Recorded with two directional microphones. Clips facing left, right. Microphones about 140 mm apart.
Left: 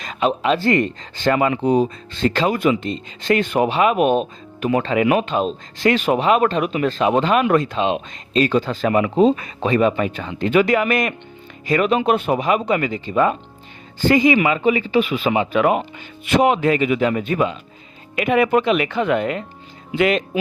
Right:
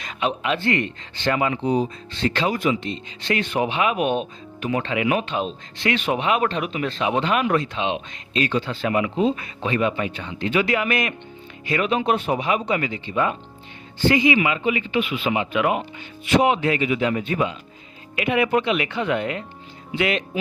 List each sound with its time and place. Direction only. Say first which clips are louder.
0.0 s speech: left 5 dB; 40° left (ahead or behind)
11.9 s speech: left 4 dB; 55° left (ahead or behind)